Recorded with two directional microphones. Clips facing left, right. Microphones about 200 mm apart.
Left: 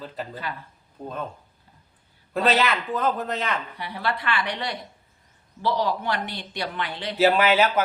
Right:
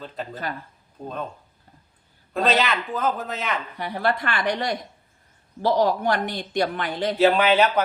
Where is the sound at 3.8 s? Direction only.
45° right (ahead or behind).